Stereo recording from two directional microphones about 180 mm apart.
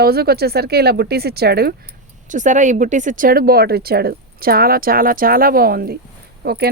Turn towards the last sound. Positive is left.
turn(degrees=-60)  # may be behind; listen again after turning